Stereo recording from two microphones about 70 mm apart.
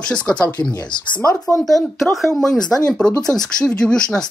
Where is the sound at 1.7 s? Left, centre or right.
Centre.